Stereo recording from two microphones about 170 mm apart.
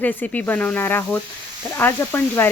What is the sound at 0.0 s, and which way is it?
Speech, 10° left (ahead or behind).